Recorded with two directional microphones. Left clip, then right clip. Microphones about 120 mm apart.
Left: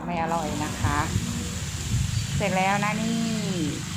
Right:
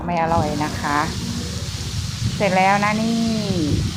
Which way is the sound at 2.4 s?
35° right (ahead or behind).